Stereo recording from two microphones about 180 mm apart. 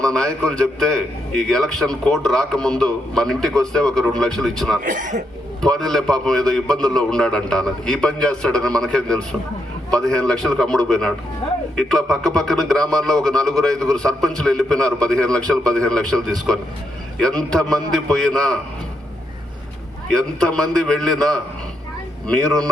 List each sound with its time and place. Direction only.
0.0 s a man's voice: 5° left (ahead or behind)
4.8 s speech: 45° right (ahead or behind)
5.6 s a man's voice: centre (ahead or behind)
20.1 s a man's voice: 5° left (ahead or behind)